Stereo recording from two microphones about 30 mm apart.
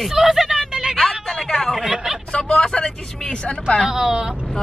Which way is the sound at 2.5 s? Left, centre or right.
Left.